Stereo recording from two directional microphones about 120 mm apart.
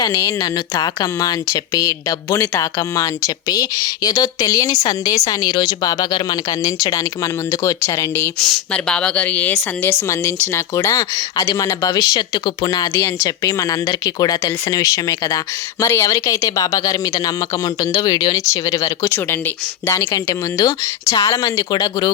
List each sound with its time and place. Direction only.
0.0 s speech: 25° left (ahead or behind)
8.4 s a woman's voice: 5° left (ahead or behind); by 22.1 s 35° left (ahead or behind)